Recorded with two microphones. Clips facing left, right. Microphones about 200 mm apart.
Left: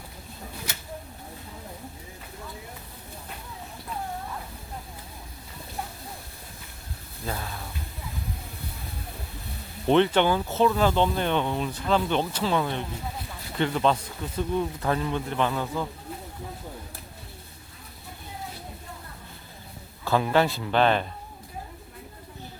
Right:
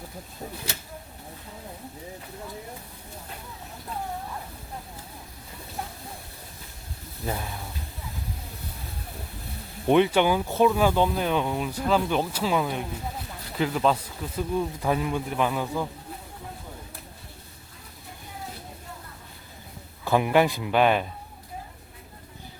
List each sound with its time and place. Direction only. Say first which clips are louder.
7.3 s a sound: right 2 dB; 15° right (ahead or behind)
9.8 s speech: right 1 dB; 10° right (ahead or behind)
20.1 s speech: right 2 dB; 15° right (ahead or behind)